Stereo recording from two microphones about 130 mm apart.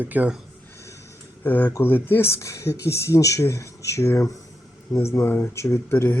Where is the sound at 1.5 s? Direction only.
15° left (ahead or behind).